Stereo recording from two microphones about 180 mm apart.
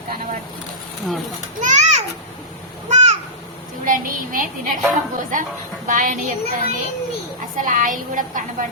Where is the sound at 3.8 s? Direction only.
45° right (ahead or behind).